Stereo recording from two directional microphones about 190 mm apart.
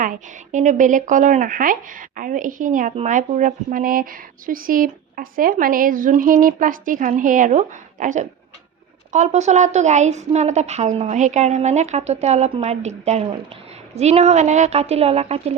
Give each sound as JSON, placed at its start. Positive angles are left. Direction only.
{"t": 0.0, "sound": "a woman's voice", "side_deg": -40}